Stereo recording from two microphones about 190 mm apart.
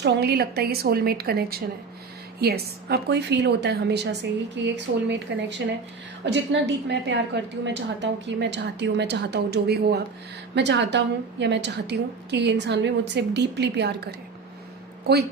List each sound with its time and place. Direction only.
0.0 s a woman's voice: 60° right (ahead or behind)